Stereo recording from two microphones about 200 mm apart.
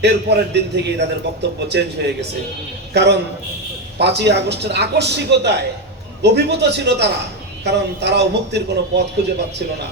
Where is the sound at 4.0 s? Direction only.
55° right (ahead or behind).